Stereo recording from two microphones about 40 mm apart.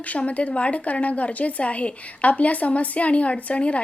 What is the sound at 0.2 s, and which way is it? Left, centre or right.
A woman's voice, left.